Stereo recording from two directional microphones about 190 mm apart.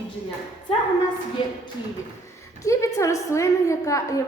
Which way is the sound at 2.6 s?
15° left (ahead or behind).